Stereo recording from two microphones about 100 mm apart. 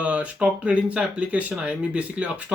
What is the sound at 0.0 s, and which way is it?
Speech, 10° right (ahead or behind).